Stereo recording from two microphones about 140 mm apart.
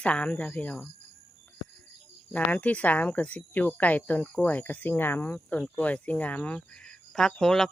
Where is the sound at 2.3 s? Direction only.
10° left (ahead or behind).